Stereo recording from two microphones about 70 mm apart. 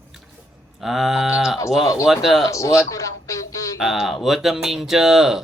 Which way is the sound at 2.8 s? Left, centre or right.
Left.